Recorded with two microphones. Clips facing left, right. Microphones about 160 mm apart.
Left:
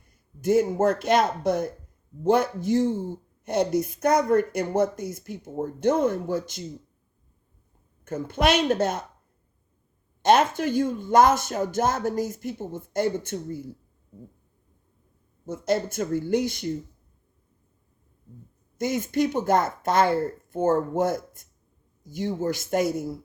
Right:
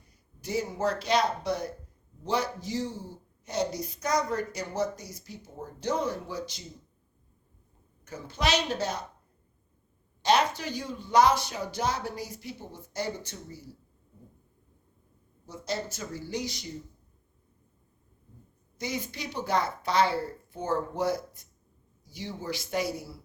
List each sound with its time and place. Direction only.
0.0 s speech: 50° left (ahead or behind)
8.0 s speech: 55° left (ahead or behind)
10.2 s speech: 50° left (ahead or behind)
15.4 s speech: 55° left (ahead or behind)
18.8 s speech: 50° left (ahead or behind)